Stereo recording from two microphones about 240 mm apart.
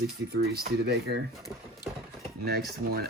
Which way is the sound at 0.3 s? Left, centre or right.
Right.